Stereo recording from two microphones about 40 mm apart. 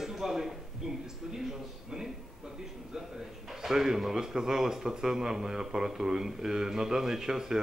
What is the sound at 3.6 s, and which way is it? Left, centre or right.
A man's voice, centre.